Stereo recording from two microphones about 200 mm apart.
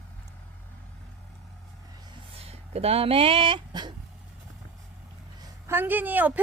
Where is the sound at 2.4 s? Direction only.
30° right (ahead or behind).